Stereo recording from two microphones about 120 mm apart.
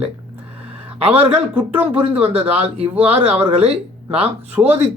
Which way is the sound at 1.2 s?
15° right (ahead or behind).